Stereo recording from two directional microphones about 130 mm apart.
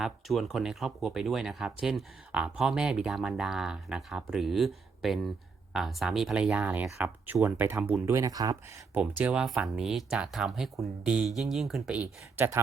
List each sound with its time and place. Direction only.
0.0 s speech: centre (ahead or behind); by 8.5 s 30° right (ahead or behind)
8.9 s speech: 15° right (ahead or behind)